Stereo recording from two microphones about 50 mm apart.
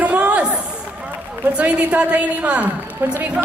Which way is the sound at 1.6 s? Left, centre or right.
Right.